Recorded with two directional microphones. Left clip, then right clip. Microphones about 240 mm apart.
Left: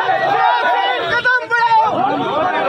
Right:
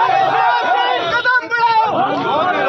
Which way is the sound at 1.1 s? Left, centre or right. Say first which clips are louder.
Even; left.